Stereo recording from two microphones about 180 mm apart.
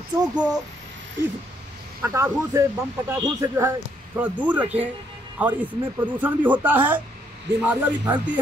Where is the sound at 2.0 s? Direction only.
10° right (ahead or behind).